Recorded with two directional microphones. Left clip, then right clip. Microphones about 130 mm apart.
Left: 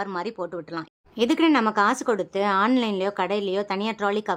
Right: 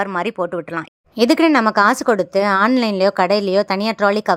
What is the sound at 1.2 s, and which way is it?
A woman's voice, 45° right (ahead or behind).